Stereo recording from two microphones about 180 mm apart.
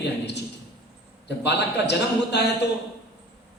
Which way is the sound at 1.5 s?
70° left (ahead or behind).